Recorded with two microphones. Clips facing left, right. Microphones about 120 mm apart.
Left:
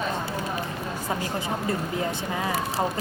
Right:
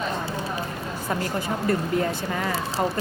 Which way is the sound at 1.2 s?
20° left (ahead or behind).